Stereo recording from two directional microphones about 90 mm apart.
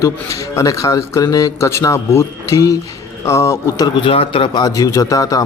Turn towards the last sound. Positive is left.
turn(degrees=40)  # may be behind; listen again after turning